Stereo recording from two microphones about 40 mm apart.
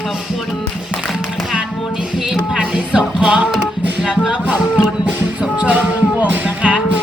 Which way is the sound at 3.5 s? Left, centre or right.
Centre.